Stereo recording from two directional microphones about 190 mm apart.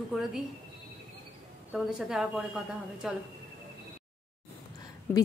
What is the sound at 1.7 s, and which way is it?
A woman's voice, centre (ahead or behind).